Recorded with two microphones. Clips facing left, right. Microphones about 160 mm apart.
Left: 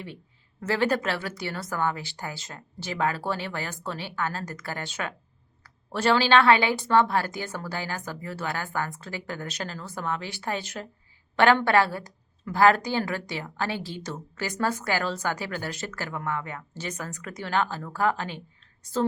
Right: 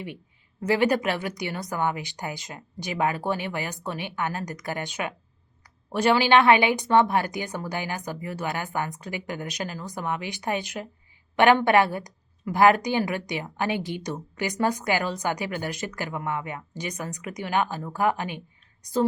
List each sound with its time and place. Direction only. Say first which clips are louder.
0.6 s a woman's voice: right 3 dB; 15° right (ahead or behind)